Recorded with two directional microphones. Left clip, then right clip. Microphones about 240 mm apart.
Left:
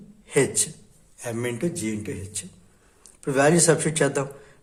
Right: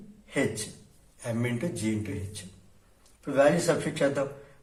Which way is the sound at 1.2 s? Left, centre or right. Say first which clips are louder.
Left 4 dB; left.